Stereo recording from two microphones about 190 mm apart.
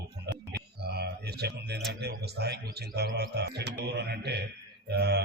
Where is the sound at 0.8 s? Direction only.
60° right (ahead or behind).